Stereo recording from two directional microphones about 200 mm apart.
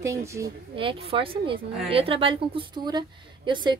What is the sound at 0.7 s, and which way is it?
A woman's voice, 25° right (ahead or behind).